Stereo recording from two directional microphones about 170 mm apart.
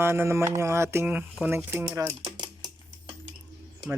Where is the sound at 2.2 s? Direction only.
25° right (ahead or behind).